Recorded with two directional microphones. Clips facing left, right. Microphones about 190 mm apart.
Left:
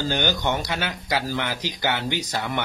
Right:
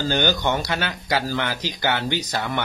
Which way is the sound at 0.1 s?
15° left (ahead or behind).